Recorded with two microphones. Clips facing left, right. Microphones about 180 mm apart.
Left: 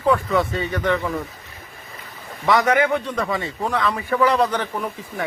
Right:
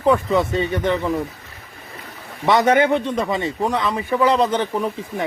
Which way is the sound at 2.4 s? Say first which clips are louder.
Right 2 dB; 25° right (ahead or behind).